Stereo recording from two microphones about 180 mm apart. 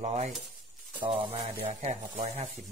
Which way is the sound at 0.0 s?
40° right (ahead or behind).